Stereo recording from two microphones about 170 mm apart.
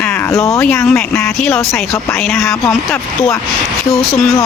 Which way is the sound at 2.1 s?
15° left (ahead or behind).